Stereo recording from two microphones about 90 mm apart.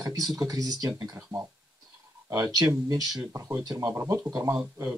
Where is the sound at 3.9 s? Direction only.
30° right (ahead or behind).